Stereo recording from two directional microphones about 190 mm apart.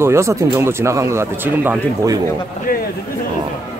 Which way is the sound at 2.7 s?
45° left (ahead or behind).